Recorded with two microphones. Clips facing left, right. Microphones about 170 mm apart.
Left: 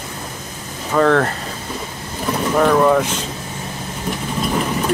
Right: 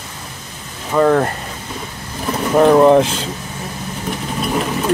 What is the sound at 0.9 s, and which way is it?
Speech, 15° right (ahead or behind).